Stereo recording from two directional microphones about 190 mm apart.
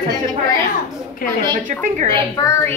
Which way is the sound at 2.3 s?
15° left (ahead or behind).